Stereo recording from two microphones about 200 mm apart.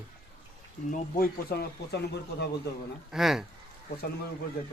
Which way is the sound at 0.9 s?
45° left (ahead or behind).